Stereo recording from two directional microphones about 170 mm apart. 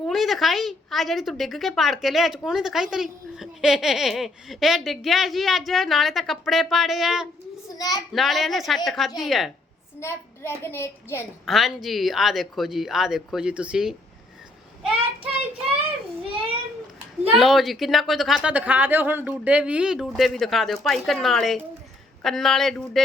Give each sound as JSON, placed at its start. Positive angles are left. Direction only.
{"t": 0.0, "sound": "a woman's voice", "side_deg": 0}
{"t": 7.8, "sound": "a child's voice", "side_deg": 20}
{"t": 8.1, "sound": "a woman's voice", "side_deg": 0}
{"t": 10.0, "sound": "a child's voice", "side_deg": 15}
{"t": 11.4, "sound": "a woman's voice", "side_deg": 0}
{"t": 17.3, "sound": "a woman's voice", "side_deg": 0}